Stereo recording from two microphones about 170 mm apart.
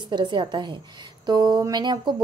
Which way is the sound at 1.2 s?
25° right (ahead or behind).